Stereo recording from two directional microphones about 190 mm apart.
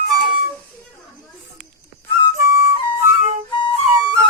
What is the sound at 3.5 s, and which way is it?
Flute, 25° left (ahead or behind).